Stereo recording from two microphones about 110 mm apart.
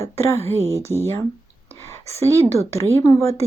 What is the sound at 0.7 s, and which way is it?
Speech, 25° right (ahead or behind).